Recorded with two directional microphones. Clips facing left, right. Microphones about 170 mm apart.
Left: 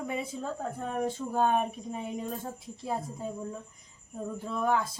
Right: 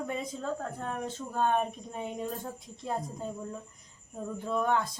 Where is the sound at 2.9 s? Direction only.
5° left (ahead or behind).